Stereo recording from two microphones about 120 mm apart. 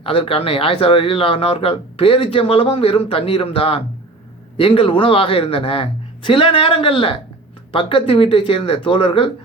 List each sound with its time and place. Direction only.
0.0 s speech: 50° left (ahead or behind)